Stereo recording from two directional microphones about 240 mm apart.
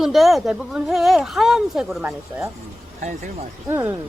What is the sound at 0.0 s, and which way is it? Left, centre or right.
A woman's voice, centre.